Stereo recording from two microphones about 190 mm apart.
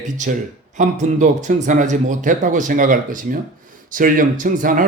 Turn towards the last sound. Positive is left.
turn(degrees=-45)  # may be behind; listen again after turning